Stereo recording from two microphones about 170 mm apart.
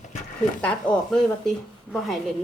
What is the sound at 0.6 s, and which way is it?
Speech, 5° left (ahead or behind).